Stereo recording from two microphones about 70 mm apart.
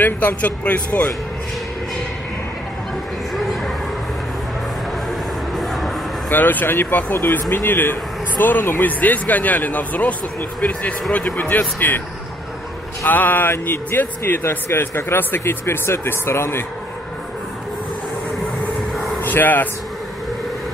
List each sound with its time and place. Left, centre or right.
0.0 s speech: left
5.5 s a sound: centre
6.3 s speech: left
13.0 s speech: left
19.2 s speech: left